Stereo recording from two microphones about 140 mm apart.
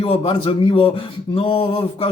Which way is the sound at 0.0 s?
45° left (ahead or behind).